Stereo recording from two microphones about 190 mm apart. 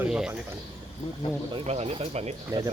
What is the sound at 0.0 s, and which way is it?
Speech, 5° right (ahead or behind).